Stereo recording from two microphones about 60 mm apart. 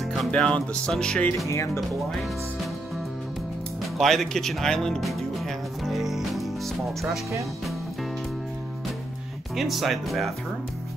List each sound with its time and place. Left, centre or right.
0.0 s music: centre
0.3 s speech: centre
1.8 s speech: centre
4.0 s speech: centre
7.0 s speech: right
9.6 s speech: centre